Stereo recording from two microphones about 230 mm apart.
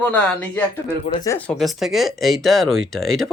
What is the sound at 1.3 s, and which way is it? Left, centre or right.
Speech, centre.